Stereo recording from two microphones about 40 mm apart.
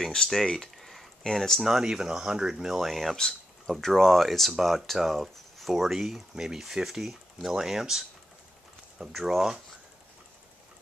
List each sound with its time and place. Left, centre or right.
0.0 s speech: centre
0.6 s a sound: centre
1.2 s speech: centre
1.6 s speech: centre
2.7 s speech: centre
3.2 s a sound: centre
3.8 s speech: centre
9.1 s speech: centre